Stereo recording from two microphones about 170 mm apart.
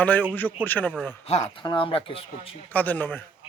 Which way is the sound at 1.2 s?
35° left (ahead or behind).